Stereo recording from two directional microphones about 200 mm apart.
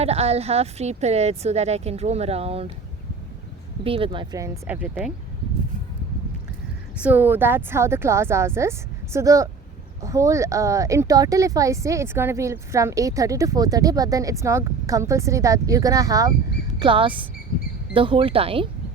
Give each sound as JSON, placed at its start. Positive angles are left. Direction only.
{"t": 0.0, "sound": "speech", "side_deg": -30}
{"t": 3.8, "sound": "speech", "side_deg": -25}
{"t": 6.9, "sound": "speech", "side_deg": -5}